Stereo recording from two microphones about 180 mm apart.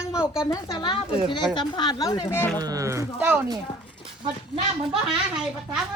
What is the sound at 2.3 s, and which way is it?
Speech, 10° left (ahead or behind).